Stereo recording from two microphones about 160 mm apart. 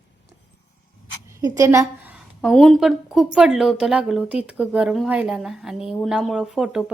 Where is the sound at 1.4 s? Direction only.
20° right (ahead or behind).